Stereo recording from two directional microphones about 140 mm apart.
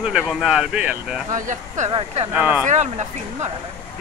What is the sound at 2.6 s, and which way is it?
Speech, 55° right (ahead or behind).